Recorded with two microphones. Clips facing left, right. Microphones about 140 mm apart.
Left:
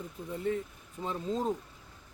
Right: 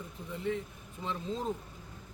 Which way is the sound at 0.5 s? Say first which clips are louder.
Left 1 dB; 45° left (ahead or behind).